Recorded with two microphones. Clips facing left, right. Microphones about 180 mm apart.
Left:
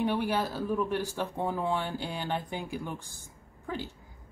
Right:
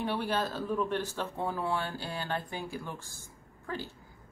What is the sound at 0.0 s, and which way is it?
A woman's voice, 15° left (ahead or behind).